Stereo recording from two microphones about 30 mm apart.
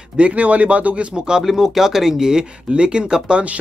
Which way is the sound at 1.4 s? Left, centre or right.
Centre.